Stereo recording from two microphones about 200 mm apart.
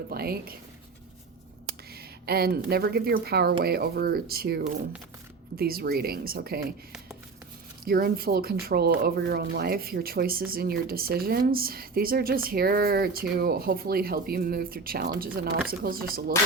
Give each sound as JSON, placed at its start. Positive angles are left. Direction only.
{"t": 0.1, "sound": "a woman's voice", "side_deg": -50}
{"t": 1.6, "sound": "a woman's voice", "side_deg": -50}
{"t": 7.9, "sound": "a woman's voice", "side_deg": -50}